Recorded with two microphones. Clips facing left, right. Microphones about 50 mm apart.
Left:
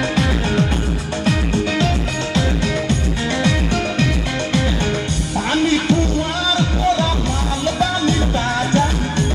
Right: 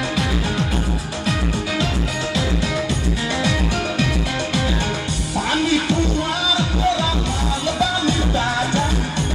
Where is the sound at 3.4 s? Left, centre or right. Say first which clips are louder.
Left 3 dB; left.